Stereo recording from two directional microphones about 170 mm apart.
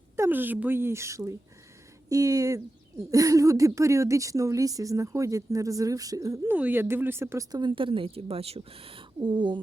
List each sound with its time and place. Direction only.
0.2 s a woman's voice: 10° right (ahead or behind); by 9.6 s 30° right (ahead or behind)